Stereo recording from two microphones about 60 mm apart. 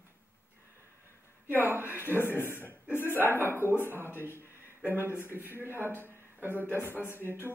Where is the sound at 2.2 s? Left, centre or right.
Left.